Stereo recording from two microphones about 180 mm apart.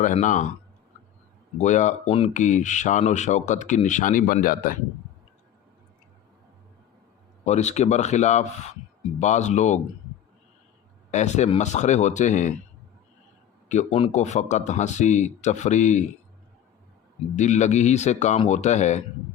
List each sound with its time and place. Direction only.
0.0 s speech: 45° left (ahead or behind)
1.6 s speech: 40° left (ahead or behind)
7.4 s speech: 40° left (ahead or behind)
11.1 s speech: 40° left (ahead or behind)
13.7 s speech: 40° left (ahead or behind)
17.3 s speech: 40° left (ahead or behind)